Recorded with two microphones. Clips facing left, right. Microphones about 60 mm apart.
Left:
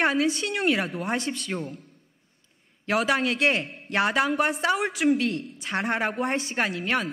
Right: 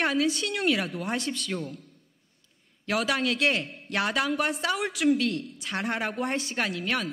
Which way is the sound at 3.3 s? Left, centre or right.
Left.